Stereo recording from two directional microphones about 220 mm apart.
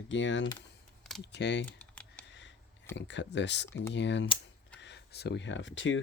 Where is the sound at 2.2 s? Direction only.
5° left (ahead or behind).